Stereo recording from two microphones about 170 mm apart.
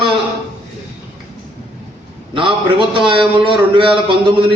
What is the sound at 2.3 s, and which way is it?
A man's voice, 30° right (ahead or behind).